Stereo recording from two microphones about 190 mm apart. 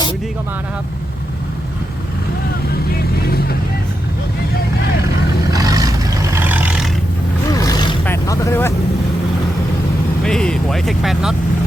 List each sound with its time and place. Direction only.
3.0 s vehicle: 55° left (ahead or behind)
5.5 s vehicle: 20° right (ahead or behind)
7.5 s a sound: 20° left (ahead or behind)
8.0 s vehicle: 15° left (ahead or behind)
10.2 s vehicle: 5° left (ahead or behind)